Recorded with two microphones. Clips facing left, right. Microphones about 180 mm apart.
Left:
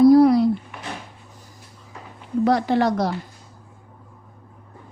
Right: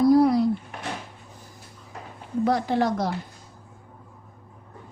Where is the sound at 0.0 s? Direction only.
75° left (ahead or behind).